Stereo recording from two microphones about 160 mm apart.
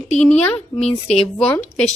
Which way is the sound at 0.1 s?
45° left (ahead or behind).